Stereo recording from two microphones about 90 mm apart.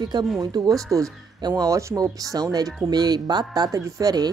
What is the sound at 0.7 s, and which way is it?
Speech, centre (ahead or behind).